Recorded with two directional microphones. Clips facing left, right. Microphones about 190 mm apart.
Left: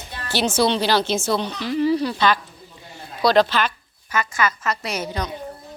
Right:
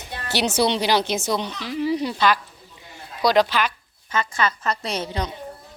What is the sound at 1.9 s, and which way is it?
Speech, 20° right (ahead or behind).